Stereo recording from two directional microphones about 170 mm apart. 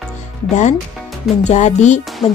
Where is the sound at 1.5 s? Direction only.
45° left (ahead or behind).